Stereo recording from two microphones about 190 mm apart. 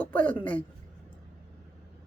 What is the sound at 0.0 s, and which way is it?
Speech, 5° left (ahead or behind).